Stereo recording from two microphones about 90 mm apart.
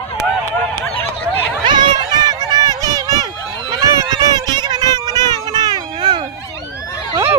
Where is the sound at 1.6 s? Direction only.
55° right (ahead or behind).